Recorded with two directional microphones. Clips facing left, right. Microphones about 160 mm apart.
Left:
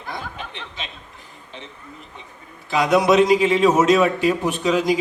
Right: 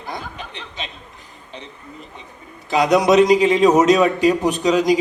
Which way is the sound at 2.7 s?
20° right (ahead or behind).